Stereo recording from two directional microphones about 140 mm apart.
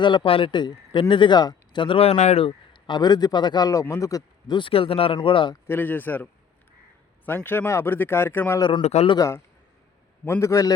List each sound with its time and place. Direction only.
0.0 s speech: 35° left (ahead or behind)
5.6 s speech: 15° left (ahead or behind)
7.3 s speech: 15° left (ahead or behind)
8.8 s a man's voice: 50° left (ahead or behind)
9.0 s a man's voice: 25° left (ahead or behind)